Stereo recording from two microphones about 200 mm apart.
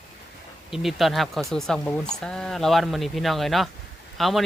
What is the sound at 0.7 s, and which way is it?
Speech, centre (ahead or behind).